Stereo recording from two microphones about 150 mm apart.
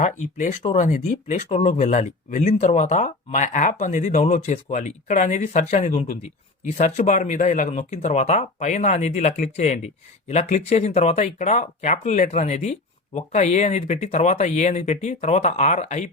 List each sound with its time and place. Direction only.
0.0 s speech: 55° left (ahead or behind)